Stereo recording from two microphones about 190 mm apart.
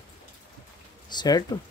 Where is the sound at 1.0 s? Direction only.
20° left (ahead or behind).